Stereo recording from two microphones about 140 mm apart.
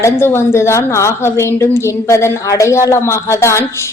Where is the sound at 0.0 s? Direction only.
15° left (ahead or behind).